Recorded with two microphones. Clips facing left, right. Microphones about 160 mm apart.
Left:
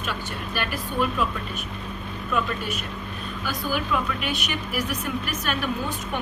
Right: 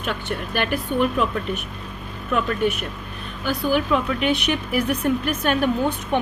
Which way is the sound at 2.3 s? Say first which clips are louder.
Right 6 dB; 55° right (ahead or behind).